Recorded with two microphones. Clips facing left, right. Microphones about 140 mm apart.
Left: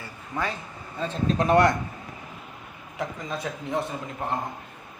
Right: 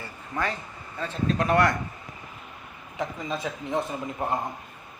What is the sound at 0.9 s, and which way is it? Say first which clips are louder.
Speech: left 1 dB; 20° left (ahead or behind).